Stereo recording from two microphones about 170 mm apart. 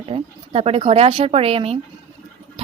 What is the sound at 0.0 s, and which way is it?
Speech, 35° right (ahead or behind).